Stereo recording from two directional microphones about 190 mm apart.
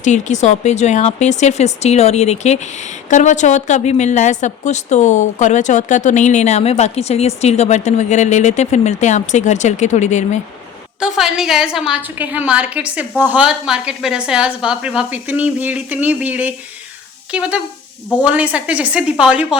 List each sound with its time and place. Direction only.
0.0 s speech: 40° left (ahead or behind)
11.0 s a woman's voice: centre (ahead or behind)